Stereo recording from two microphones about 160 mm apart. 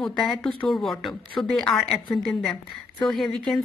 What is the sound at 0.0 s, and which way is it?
Speech, centre (ahead or behind).